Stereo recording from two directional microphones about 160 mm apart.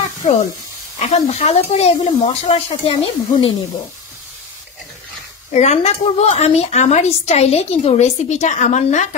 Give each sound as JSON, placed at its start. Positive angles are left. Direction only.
{"t": 0.9, "sound": "speech", "side_deg": 45}
{"t": 5.5, "sound": "a woman's voice", "side_deg": 45}